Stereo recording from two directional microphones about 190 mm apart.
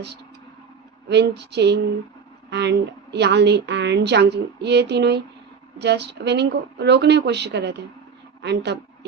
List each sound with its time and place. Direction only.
1.0 s a woman's voice: 60° right (ahead or behind)